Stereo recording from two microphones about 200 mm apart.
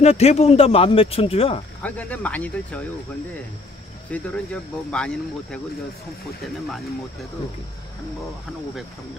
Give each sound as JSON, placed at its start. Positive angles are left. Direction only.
{"t": 0.0, "sound": "speech", "side_deg": 30}
{"t": 1.8, "sound": "speech", "side_deg": 5}
{"t": 4.1, "sound": "speech", "side_deg": 5}